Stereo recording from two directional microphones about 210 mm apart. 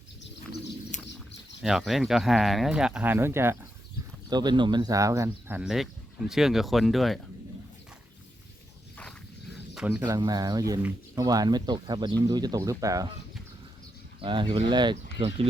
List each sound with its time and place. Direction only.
1.6 s speech: centre (ahead or behind)
9.9 s speech: 15° right (ahead or behind)
14.2 s speech: 25° right (ahead or behind)